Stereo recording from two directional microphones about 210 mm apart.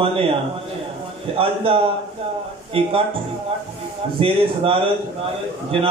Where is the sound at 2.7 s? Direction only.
25° right (ahead or behind).